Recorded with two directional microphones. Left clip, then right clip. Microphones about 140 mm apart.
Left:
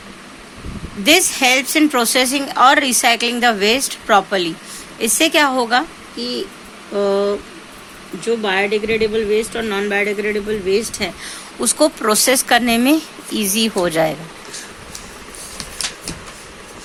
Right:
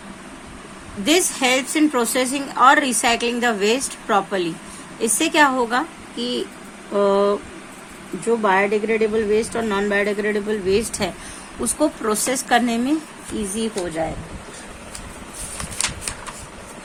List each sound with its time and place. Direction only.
1.0 s a woman's voice: 20° left (ahead or behind)
6.1 s speech: 5° right (ahead or behind)
11.6 s a woman's voice: 15° left (ahead or behind)
13.3 s speech: 50° left (ahead or behind)